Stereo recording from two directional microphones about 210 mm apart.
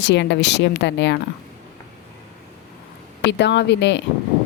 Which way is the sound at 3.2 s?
55° left (ahead or behind).